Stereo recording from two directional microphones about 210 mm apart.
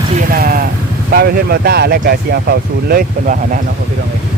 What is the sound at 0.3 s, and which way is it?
Vehicle, 45° right (ahead or behind).